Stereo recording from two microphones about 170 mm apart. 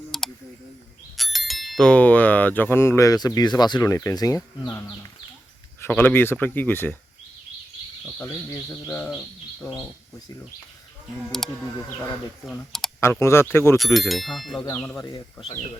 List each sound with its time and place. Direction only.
0.1 s a sound: centre (ahead or behind)
1.1 s speech: centre (ahead or behind); by 4.9 s 20° left (ahead or behind)
5.8 s speech: 10° left (ahead or behind)
9.0 s speech: centre (ahead or behind)
12.5 s speech: 5° left (ahead or behind)
13.7 s speech: centre (ahead or behind)
14.6 s speech: 10° left (ahead or behind)